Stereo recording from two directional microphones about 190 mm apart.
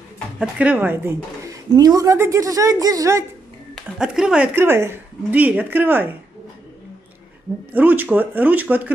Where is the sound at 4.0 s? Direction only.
5° right (ahead or behind).